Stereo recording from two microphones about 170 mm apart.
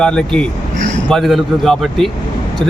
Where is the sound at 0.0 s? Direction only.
5° left (ahead or behind).